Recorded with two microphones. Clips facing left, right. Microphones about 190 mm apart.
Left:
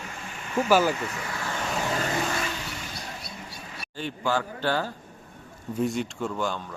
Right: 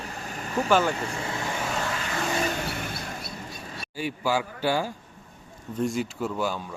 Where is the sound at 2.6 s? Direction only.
55° right (ahead or behind).